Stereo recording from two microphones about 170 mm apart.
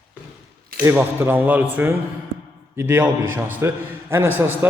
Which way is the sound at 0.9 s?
15° right (ahead or behind).